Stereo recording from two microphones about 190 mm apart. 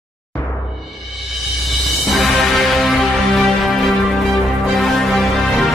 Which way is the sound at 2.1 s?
Centre (ahead or behind).